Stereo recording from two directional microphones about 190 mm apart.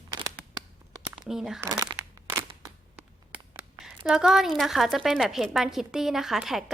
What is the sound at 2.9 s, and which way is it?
Speech, 5° right (ahead or behind).